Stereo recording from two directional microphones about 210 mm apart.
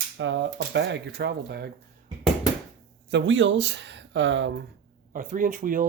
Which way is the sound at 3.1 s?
60° right (ahead or behind).